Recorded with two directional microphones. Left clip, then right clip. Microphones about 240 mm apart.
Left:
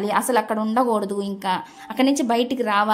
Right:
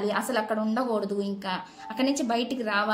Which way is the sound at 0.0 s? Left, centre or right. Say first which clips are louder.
Left 7 dB; left.